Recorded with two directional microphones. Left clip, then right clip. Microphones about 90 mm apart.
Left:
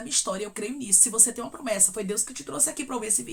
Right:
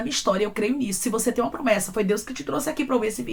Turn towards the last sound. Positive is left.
turn(degrees=30)  # may be behind; listen again after turning